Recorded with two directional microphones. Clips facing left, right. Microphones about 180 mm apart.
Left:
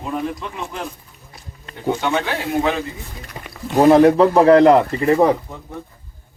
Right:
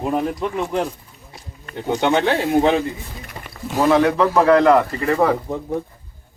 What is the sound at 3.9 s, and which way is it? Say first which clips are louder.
Speech: left 3 dB; 35° left (ahead or behind).